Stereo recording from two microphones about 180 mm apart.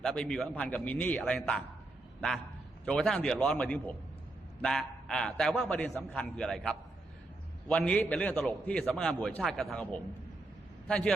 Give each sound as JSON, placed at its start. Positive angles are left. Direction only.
{"t": 0.0, "sound": "a man's voice", "side_deg": 5}
{"t": 2.8, "sound": "a man's voice", "side_deg": 5}